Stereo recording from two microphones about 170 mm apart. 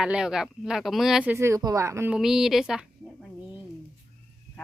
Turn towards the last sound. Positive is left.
turn(degrees=-5)  # may be behind; listen again after turning